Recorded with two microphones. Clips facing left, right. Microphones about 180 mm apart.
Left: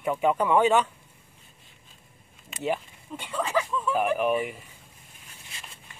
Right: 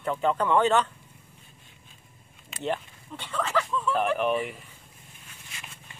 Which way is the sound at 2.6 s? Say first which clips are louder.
Left 1 dB; 10° left (ahead or behind).